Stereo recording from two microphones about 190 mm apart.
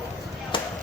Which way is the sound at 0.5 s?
25° left (ahead or behind).